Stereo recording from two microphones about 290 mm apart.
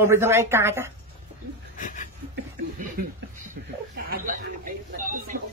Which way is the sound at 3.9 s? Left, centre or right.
Right.